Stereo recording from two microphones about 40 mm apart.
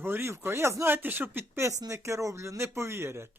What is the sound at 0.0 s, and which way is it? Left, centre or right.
Speech, right.